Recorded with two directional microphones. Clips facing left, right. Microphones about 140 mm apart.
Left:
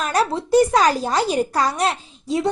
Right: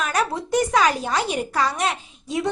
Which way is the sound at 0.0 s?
35° left (ahead or behind).